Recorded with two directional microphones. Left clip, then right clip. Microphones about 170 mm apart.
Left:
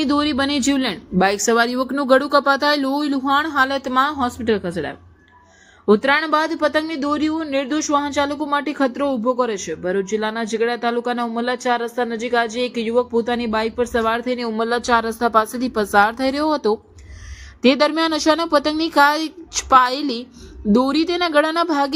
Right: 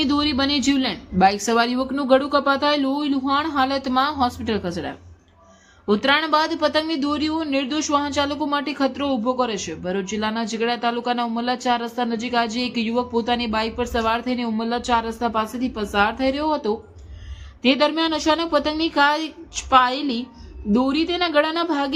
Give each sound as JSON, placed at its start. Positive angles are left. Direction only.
{"t": 0.0, "sound": "a woman's voice", "side_deg": 20}